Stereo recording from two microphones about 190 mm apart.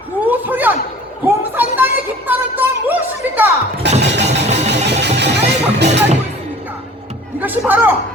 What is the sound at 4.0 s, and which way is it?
Vehicle, 65° right (ahead or behind).